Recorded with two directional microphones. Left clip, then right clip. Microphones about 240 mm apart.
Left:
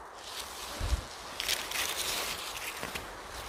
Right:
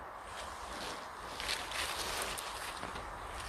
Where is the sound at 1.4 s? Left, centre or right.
Left.